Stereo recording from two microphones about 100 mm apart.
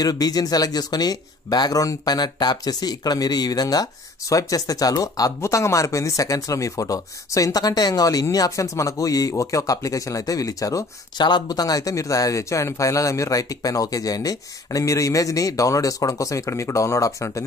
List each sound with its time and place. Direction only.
0.0 s speech: 40° left (ahead or behind)